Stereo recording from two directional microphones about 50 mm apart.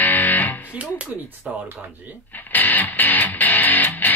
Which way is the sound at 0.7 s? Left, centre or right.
Right.